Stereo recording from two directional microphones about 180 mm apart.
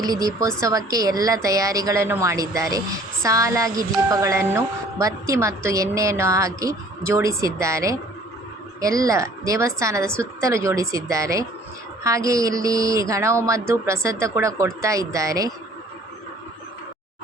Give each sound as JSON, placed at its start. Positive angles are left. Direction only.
{"t": 0.0, "sound": "a woman's voice", "side_deg": -20}